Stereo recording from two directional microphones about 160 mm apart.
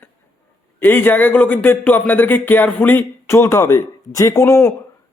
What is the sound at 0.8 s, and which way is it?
Speech, 10° left (ahead or behind).